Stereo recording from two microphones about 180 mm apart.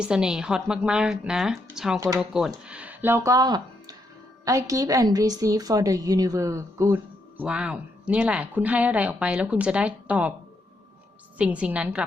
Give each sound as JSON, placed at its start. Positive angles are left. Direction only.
{"t": 0.0, "sound": "a woman's voice", "side_deg": -5}
{"t": 2.6, "sound": "a sound", "side_deg": -5}
{"t": 4.4, "sound": "a woman's voice", "side_deg": -20}
{"t": 11.3, "sound": "a woman's voice", "side_deg": -5}